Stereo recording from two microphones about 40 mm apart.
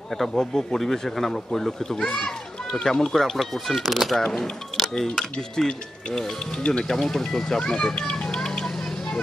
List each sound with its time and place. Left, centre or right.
0.2 s a child's voice: centre
4.2 s a child's voice: centre
5.6 s a child's voice: centre